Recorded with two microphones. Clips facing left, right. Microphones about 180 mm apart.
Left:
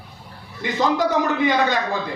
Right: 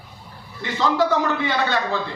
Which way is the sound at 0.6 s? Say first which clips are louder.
Even; 15° left (ahead or behind).